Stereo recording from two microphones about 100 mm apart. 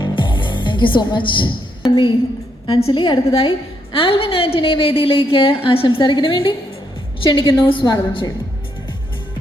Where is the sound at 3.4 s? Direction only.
65° left (ahead or behind).